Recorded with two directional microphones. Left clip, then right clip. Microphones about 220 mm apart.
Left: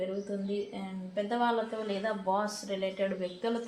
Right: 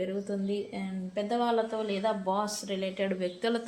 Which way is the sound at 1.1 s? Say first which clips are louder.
Right 1 dB; 40° right (ahead or behind).